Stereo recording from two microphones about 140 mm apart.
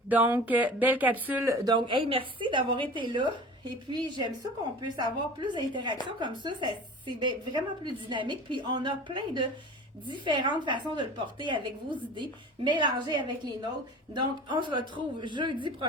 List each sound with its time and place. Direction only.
0.1 s speech: 10° right (ahead or behind)
1.6 s a woman's voice: 35° right (ahead or behind)